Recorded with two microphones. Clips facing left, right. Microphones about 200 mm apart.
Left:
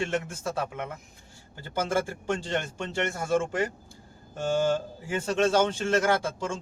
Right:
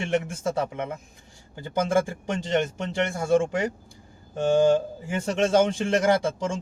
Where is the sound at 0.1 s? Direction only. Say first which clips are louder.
Right 5 dB; 20° right (ahead or behind).